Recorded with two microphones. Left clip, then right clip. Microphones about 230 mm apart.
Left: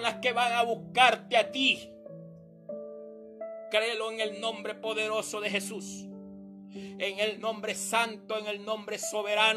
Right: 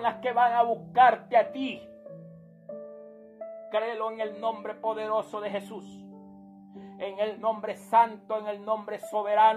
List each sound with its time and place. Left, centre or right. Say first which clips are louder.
0.0 s music: right 3 dB; left
3.7 s music: even; left
6.8 s music: even; left